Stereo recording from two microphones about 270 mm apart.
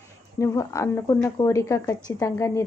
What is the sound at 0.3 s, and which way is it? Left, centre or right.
Speech, centre.